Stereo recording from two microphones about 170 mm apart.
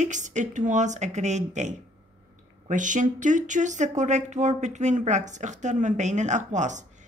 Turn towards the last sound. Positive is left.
turn(degrees=-45)  # may be behind; listen again after turning